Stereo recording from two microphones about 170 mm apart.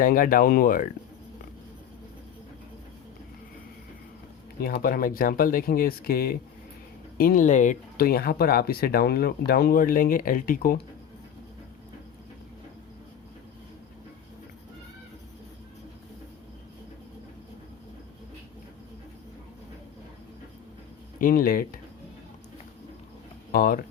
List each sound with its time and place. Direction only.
0.0 s speech: 55° left (ahead or behind)
4.6 s speech: 60° left (ahead or behind)
8.0 s speech: 65° left (ahead or behind)
21.2 s speech: 55° left (ahead or behind)
23.5 s speech: 60° left (ahead or behind)